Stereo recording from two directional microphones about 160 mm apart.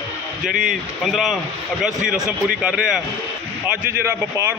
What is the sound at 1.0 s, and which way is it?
A man's voice, centre (ahead or behind).